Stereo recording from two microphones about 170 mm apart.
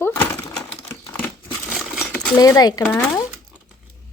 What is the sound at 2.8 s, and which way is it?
Speech, 5° left (ahead or behind).